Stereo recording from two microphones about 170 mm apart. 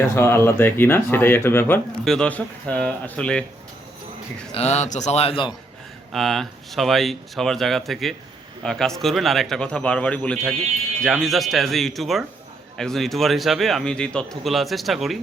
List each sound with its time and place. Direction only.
0.2 s speech: 15° left (ahead or behind)
4.5 s a man's voice: 40° left (ahead or behind)
6.1 s speech: centre (ahead or behind)